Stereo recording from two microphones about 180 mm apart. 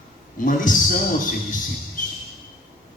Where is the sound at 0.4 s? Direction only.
50° left (ahead or behind).